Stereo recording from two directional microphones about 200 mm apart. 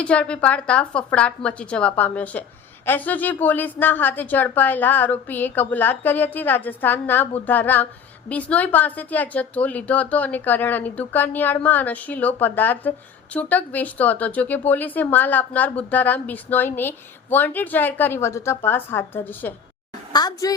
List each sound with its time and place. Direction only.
0.0 s a woman's voice: 5° left (ahead or behind)
20.1 s a woman's voice: 20° left (ahead or behind)